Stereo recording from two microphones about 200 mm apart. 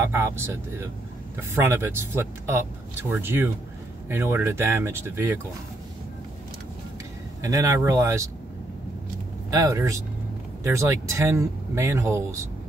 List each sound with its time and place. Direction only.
0.0 s speech: 10° right (ahead or behind)
7.4 s speech: 15° right (ahead or behind)
9.5 s speech: 15° right (ahead or behind)